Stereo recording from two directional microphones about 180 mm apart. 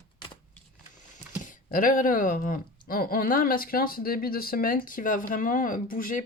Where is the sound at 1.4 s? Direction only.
45° left (ahead or behind).